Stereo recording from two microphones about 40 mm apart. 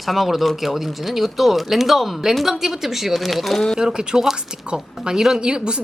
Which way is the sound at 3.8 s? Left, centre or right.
Centre.